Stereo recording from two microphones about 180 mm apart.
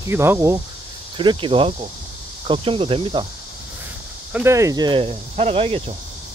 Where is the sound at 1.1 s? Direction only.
30° right (ahead or behind).